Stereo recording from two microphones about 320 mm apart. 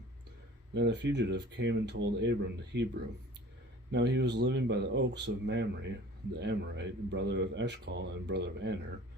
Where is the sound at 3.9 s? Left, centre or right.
Right.